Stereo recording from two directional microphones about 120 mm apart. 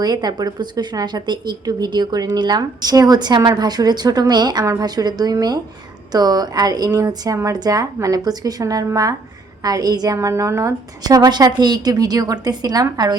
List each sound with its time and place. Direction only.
0.0 s speech: 35° right (ahead or behind)